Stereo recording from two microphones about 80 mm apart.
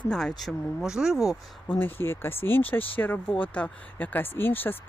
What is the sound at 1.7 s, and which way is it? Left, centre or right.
Speech, left.